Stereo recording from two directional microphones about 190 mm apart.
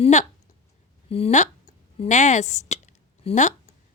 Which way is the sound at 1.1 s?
30° left (ahead or behind).